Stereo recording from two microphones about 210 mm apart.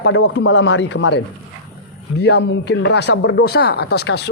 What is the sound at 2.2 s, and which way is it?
Speech, 55° left (ahead or behind).